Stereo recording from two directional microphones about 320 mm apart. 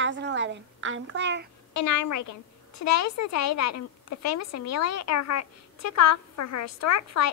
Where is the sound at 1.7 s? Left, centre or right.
Left.